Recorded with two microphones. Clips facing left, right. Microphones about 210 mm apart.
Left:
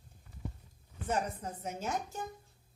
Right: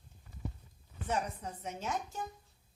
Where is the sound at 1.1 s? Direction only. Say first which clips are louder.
Left 1 dB; 45° left (ahead or behind).